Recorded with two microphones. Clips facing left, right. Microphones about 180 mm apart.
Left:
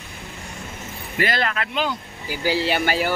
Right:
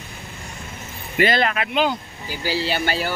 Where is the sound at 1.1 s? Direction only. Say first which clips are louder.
Right 4 dB; 20° right (ahead or behind).